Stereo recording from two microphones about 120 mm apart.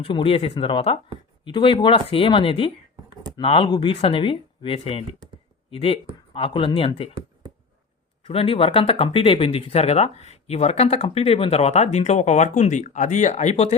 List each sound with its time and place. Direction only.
0.0 s speech: 45° left (ahead or behind)
8.2 s speech: 50° left (ahead or behind)